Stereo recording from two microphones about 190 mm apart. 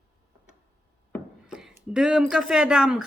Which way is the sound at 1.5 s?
5° right (ahead or behind).